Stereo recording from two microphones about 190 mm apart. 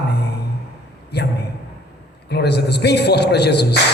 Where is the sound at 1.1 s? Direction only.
60° left (ahead or behind).